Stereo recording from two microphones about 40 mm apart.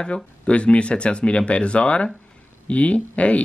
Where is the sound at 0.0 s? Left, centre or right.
Left.